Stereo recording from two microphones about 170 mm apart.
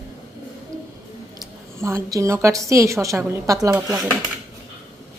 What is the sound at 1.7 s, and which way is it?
A woman's voice, 15° right (ahead or behind).